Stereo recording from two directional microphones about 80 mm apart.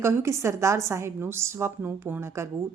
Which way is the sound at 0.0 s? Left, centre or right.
Right.